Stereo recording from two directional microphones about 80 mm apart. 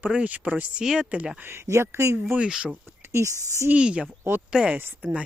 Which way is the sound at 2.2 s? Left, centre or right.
Centre.